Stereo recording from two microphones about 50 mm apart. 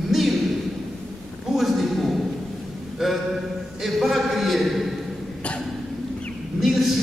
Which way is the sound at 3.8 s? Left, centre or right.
Centre.